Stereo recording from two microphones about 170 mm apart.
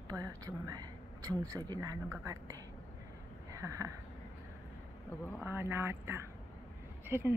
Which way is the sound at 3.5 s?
20° right (ahead or behind).